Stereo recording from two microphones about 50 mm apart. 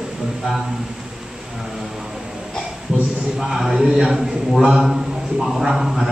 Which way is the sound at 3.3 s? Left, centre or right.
Centre.